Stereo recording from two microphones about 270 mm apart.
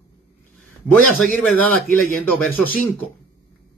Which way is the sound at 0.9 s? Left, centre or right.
Centre.